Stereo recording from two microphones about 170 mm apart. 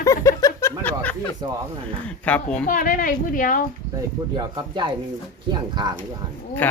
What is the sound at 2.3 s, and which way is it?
Speech, 10° left (ahead or behind).